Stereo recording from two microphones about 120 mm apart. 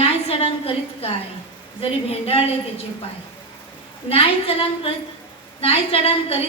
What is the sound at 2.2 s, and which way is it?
Speech, 55° left (ahead or behind).